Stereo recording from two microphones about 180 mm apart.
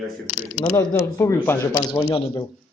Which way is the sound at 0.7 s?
15° left (ahead or behind).